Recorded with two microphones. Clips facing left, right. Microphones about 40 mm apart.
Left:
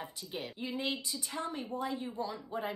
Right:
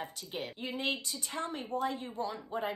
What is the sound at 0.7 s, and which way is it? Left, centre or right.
Speech, right.